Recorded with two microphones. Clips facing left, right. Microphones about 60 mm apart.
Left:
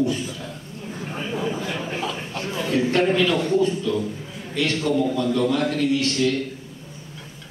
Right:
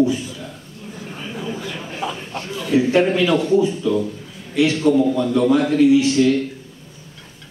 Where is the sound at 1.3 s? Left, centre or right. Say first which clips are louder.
Left 2 dB; centre.